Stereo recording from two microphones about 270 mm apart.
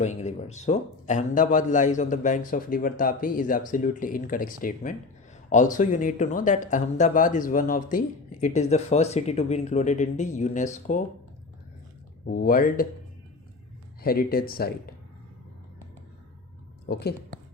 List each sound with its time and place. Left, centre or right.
0.0 s speech: left
12.3 s speech: left
14.0 s speech: left
16.9 s speech: left